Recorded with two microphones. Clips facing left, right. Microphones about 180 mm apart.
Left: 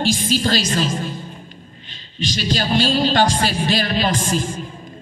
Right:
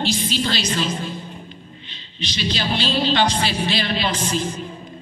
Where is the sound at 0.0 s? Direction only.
45° left (ahead or behind).